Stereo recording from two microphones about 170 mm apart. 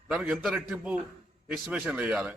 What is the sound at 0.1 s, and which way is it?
A man's voice, 5° right (ahead or behind).